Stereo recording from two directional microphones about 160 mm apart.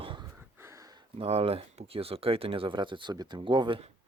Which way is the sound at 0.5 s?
20° right (ahead or behind).